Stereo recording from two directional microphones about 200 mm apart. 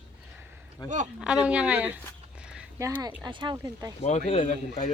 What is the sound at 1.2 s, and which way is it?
Speech, 5° right (ahead or behind).